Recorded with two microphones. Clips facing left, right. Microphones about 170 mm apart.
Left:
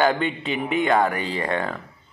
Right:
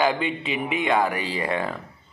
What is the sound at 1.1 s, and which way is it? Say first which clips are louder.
Speech: left 1 dB; 35° left (ahead or behind).